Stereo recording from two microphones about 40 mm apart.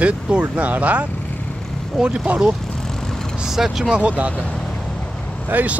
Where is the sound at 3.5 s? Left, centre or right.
Centre.